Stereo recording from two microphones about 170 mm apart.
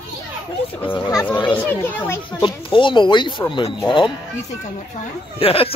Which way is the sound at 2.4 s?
30° left (ahead or behind).